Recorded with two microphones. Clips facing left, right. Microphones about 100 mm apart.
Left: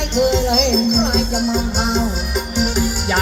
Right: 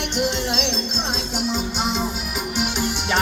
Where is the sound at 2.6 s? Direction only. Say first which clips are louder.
Left 5 dB; 45° left (ahead or behind).